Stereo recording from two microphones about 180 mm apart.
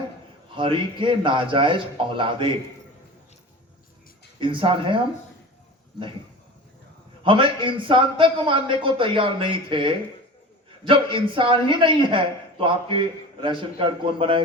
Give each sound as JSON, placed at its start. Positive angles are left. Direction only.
{"t": 0.5, "sound": "a man's voice", "side_deg": -30}
{"t": 4.4, "sound": "a man's voice", "side_deg": -30}
{"t": 7.3, "sound": "a man's voice", "side_deg": -30}